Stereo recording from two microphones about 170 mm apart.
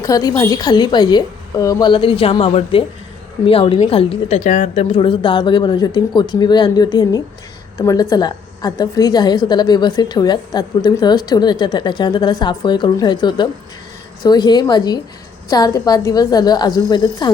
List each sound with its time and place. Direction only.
0.0 s a woman's voice: 20° left (ahead or behind)